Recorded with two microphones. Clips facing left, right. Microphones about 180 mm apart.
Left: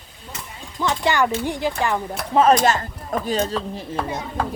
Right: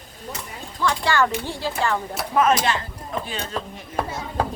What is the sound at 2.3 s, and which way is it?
Speech, 30° left (ahead or behind).